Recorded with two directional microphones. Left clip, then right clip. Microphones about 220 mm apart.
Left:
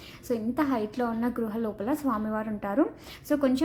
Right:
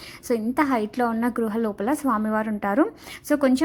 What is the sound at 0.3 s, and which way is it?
A woman's voice, 35° right (ahead or behind).